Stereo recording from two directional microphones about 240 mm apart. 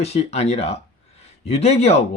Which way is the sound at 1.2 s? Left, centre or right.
Left.